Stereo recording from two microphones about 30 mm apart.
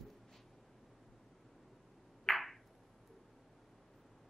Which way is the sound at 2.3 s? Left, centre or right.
Centre.